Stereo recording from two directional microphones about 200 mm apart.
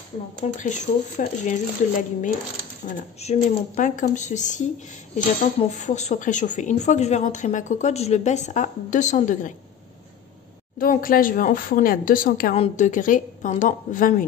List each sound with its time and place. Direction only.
0.4 s a woman's voice: 35° left (ahead or behind)
10.8 s speech: 45° left (ahead or behind)
12.5 s a woman's voice: 35° left (ahead or behind)